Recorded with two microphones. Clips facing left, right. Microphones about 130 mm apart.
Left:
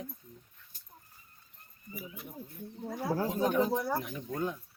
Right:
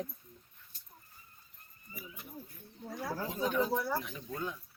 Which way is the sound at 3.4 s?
50° left (ahead or behind).